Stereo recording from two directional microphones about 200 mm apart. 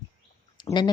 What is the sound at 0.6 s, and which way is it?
Speech, 20° left (ahead or behind).